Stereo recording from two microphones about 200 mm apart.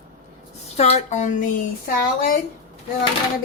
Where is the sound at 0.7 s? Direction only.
30° left (ahead or behind).